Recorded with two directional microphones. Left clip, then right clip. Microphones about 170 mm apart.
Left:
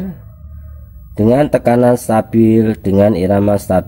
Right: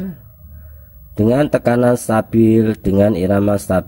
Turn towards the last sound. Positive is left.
turn(degrees=-20)  # may be behind; listen again after turning